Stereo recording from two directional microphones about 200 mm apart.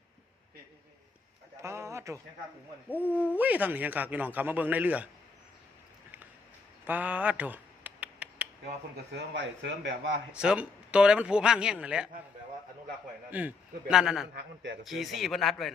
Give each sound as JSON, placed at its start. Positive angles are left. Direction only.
{"t": 1.6, "sound": "a sound", "side_deg": -15}
{"t": 2.9, "sound": "speech", "side_deg": 10}
{"t": 3.3, "sound": "a man's voice", "side_deg": -10}
{"t": 6.8, "sound": "a sound", "side_deg": -10}
{"t": 9.1, "sound": "a man's voice", "side_deg": -65}
{"t": 10.3, "sound": "speech", "side_deg": -5}
{"t": 13.3, "sound": "a man's voice", "side_deg": -10}
{"t": 14.3, "sound": "a man's voice", "side_deg": -65}
{"t": 14.8, "sound": "speech", "side_deg": 0}